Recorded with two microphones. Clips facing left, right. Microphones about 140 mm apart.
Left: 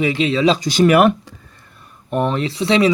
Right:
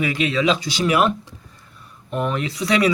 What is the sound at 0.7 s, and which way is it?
Speech, 50° left (ahead or behind).